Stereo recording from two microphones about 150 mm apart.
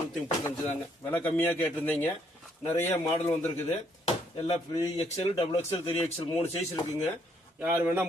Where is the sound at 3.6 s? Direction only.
45° left (ahead or behind).